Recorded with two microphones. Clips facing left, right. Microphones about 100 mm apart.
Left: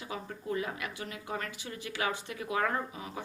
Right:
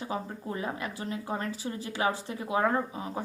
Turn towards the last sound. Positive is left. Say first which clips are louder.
# right 5 dB
turn(degrees=-35)  # may be behind; listen again after turning